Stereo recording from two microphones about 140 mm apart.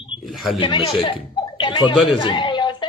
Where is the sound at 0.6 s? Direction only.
40° left (ahead or behind).